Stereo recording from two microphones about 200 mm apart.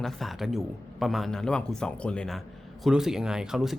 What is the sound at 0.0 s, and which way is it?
Speech, centre (ahead or behind).